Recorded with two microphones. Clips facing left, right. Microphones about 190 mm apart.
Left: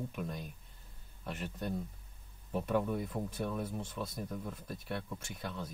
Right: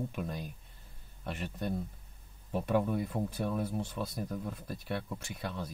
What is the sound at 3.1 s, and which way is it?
Speech, 30° right (ahead or behind).